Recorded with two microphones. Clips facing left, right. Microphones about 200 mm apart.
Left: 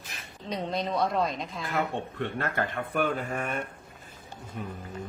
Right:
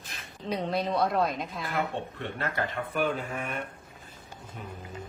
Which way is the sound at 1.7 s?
55° left (ahead or behind).